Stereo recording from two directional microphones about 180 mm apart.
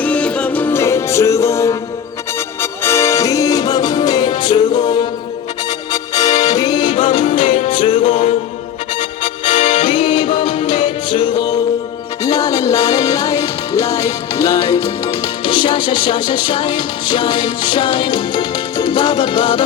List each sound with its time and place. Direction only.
0.0 s music: 5° left (ahead or behind); by 19.6 s 25° left (ahead or behind)